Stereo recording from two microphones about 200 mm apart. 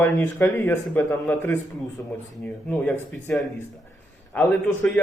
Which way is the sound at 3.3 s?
5° left (ahead or behind).